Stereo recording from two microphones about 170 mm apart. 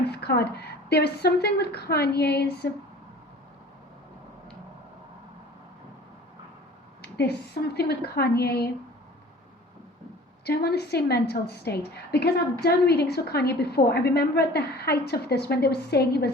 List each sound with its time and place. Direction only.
0.0 s speech: 75° left (ahead or behind)
7.7 s a woman's voice: 70° left (ahead or behind)
10.4 s a woman's voice: 70° left (ahead or behind)